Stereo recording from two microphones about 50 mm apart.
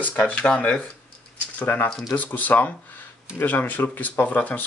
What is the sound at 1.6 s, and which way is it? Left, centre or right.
Speech, left.